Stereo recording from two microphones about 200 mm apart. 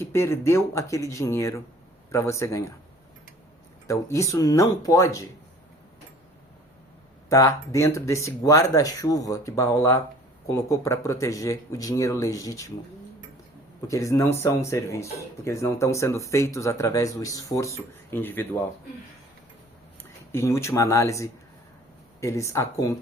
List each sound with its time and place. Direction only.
0.0 s speech: 15° left (ahead or behind)
3.8 s speech: 15° left (ahead or behind)
7.3 s speech: 15° left (ahead or behind)
13.8 s speech: 15° left (ahead or behind)
20.0 s speech: 15° left (ahead or behind)